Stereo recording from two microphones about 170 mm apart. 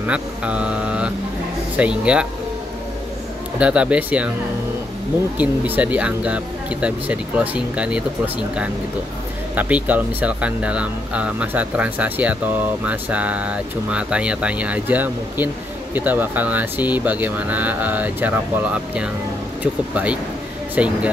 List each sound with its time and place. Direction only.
0.0 s speech: 5° right (ahead or behind)
3.5 s speech: 5° right (ahead or behind)
5.4 s speech: 10° right (ahead or behind)
9.6 s speech: 10° right (ahead or behind)